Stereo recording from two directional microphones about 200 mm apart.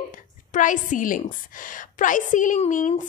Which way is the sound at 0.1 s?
40° left (ahead or behind).